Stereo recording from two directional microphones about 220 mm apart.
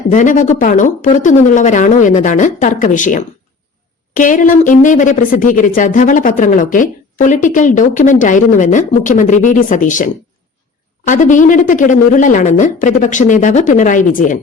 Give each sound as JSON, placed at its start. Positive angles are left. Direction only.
{"t": 0.1, "sound": "a woman's voice", "side_deg": 35}